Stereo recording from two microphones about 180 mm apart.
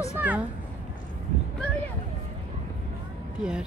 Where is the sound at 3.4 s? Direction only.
5° right (ahead or behind).